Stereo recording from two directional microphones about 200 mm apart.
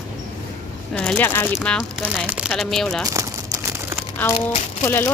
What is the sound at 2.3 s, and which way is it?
Speech, 5° right (ahead or behind).